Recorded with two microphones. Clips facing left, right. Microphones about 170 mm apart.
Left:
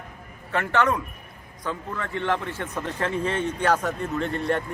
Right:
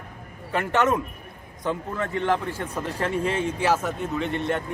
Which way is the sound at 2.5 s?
10° right (ahead or behind).